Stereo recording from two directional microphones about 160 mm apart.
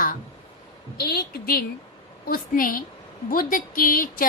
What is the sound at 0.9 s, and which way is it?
A woman's voice, 70° left (ahead or behind).